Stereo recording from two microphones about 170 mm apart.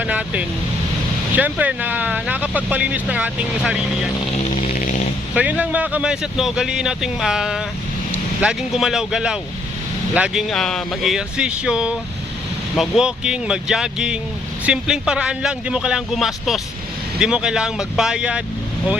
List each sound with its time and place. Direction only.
0.0 s vehicle: 10° right (ahead or behind)
1.4 s speech: 10° right (ahead or behind)
4.7 s dog: 55° left (ahead or behind)
5.3 s speech: 10° right (ahead or behind)